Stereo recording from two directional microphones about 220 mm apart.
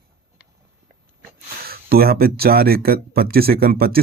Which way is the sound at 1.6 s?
45° right (ahead or behind).